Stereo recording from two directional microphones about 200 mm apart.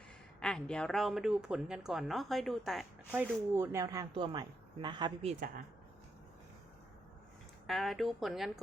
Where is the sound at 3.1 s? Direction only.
10° right (ahead or behind).